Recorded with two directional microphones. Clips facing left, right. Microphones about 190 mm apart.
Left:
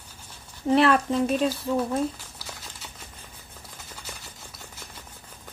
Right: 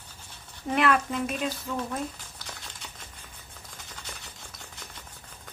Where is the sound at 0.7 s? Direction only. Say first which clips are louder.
Left 5 dB; 35° left (ahead or behind).